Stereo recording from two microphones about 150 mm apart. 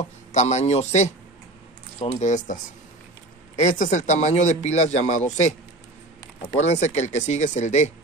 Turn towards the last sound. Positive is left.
turn(degrees=50)  # may be behind; listen again after turning